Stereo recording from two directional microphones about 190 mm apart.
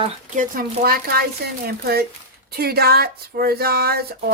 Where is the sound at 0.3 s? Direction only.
50° right (ahead or behind).